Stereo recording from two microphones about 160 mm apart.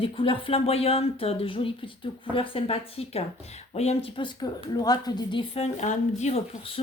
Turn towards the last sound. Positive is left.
turn(degrees=35)  # may be behind; listen again after turning